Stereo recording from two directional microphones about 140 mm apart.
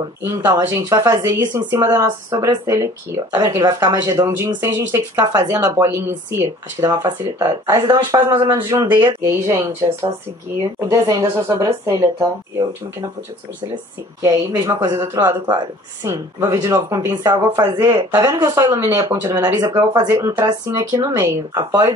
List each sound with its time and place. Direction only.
0.2 s speech: 20° right (ahead or behind)
10.8 s speech: 25° right (ahead or behind)
14.2 s speech: 25° right (ahead or behind)
16.1 s speech: 20° right (ahead or behind)